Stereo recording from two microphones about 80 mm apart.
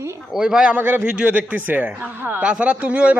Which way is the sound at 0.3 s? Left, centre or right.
Centre.